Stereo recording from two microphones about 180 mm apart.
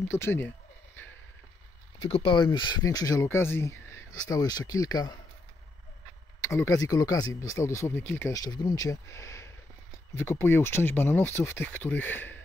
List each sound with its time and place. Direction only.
0.1 s speech: 15° left (ahead or behind)
2.0 s speech: 30° left (ahead or behind)
6.4 s speech: 15° left (ahead or behind)